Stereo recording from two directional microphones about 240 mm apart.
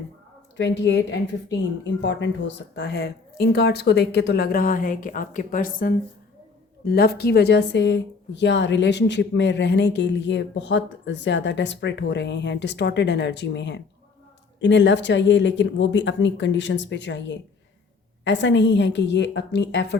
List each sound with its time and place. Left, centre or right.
0.5 s a woman's voice: left